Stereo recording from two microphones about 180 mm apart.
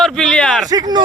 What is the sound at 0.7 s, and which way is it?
Speech, 25° right (ahead or behind).